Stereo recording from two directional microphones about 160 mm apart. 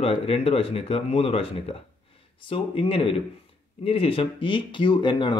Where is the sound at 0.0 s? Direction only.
40° left (ahead or behind).